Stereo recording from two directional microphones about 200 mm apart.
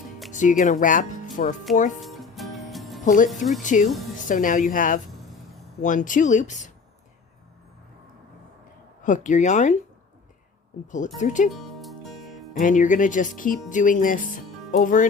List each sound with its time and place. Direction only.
0.3 s speech: 40° left (ahead or behind)
2.0 s music: centre (ahead or behind)
3.2 s speech: centre (ahead or behind)
3.6 s speech: 40° left (ahead or behind)
9.0 s speech: 40° left (ahead or behind)
11.2 s speech: 40° left (ahead or behind)
11.5 s music: centre (ahead or behind)
12.5 s speech: 40° left (ahead or behind)